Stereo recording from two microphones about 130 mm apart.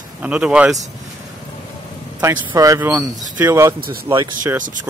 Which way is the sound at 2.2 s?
35° right (ahead or behind).